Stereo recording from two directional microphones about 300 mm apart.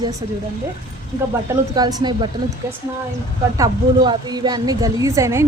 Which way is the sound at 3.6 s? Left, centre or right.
Centre.